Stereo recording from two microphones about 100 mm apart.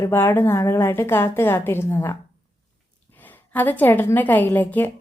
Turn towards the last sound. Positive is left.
turn(degrees=15)  # may be behind; listen again after turning